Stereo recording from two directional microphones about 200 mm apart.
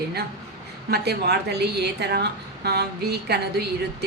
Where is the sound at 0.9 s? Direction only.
55° right (ahead or behind).